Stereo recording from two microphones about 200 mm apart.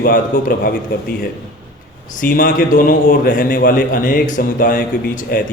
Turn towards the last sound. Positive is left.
turn(degrees=45)  # may be behind; listen again after turning